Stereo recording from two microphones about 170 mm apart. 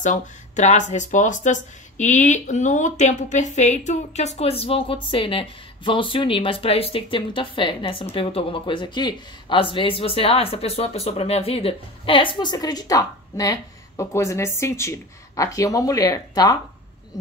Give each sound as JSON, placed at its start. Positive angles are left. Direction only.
{"t": 0.0, "sound": "speech", "side_deg": 45}